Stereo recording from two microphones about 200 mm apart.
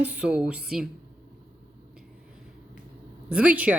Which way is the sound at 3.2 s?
5° right (ahead or behind).